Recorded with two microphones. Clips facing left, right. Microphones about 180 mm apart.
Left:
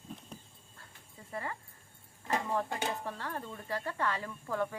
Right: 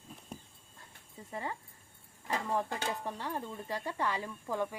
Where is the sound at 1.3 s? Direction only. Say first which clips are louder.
Even; 20° right (ahead or behind).